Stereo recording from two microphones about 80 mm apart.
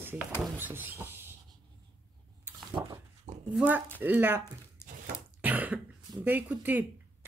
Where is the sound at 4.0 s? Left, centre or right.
Right.